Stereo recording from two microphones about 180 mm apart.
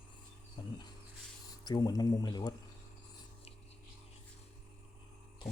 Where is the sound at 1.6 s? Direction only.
20° left (ahead or behind).